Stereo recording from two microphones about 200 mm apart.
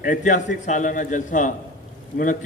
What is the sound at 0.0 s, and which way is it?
A man's voice, 40° left (ahead or behind).